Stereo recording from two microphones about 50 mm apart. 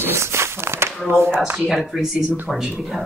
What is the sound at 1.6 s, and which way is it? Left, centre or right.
Speech, centre.